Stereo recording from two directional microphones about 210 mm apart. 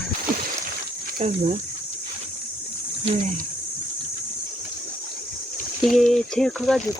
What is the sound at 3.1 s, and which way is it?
Speech, 30° right (ahead or behind).